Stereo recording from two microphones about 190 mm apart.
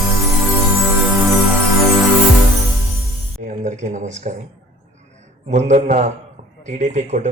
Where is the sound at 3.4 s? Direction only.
40° right (ahead or behind).